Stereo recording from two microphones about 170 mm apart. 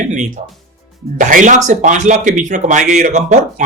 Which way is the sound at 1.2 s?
50° right (ahead or behind).